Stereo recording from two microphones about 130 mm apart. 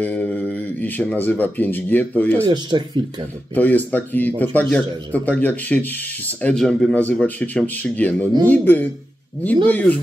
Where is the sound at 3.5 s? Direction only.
15° left (ahead or behind).